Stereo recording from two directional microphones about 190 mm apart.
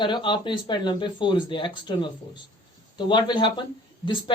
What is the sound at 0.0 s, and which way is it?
Speech, 25° left (ahead or behind).